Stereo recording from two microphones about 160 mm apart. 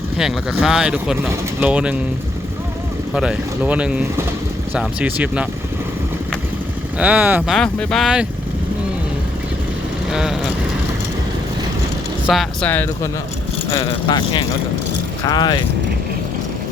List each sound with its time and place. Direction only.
0.2 s speech: 5° right (ahead or behind)
3.2 s speech: 5° right (ahead or behind)
7.0 s speech: 10° right (ahead or behind)
7.5 s speech: 5° left (ahead or behind)
10.1 s speech: 5° right (ahead or behind)
12.3 s speech: centre (ahead or behind)
12.6 s speech: 10° left (ahead or behind)
13.7 s speech: 25° left (ahead or behind)